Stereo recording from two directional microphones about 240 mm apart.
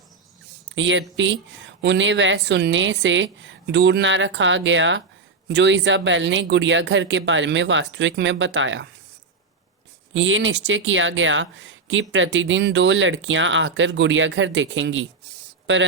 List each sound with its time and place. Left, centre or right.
0.8 s speech: right
10.2 s speech: right